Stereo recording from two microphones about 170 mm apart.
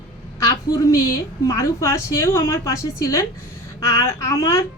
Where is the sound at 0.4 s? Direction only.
20° left (ahead or behind).